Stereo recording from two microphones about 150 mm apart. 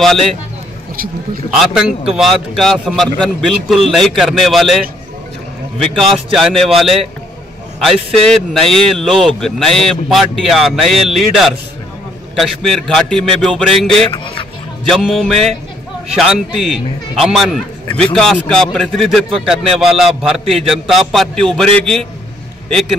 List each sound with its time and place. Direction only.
0.0 s a man's voice: centre (ahead or behind)
0.9 s speech: 75° right (ahead or behind)
1.5 s a man's voice: 5° right (ahead or behind)
14.1 s speech: 35° left (ahead or behind)
14.9 s a man's voice: centre (ahead or behind)